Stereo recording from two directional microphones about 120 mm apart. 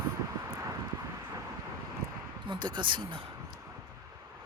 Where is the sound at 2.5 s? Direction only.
40° right (ahead or behind).